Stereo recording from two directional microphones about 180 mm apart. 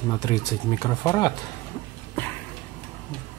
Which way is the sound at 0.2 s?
20° left (ahead or behind).